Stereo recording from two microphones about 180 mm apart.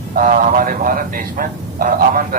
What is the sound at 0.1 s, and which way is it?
A man's voice, 50° right (ahead or behind).